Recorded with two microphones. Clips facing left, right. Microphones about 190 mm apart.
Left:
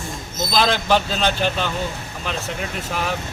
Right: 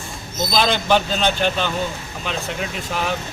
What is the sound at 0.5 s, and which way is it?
A man's voice, centre (ahead or behind).